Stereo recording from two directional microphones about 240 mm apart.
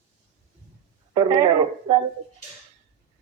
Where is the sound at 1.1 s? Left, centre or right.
Centre.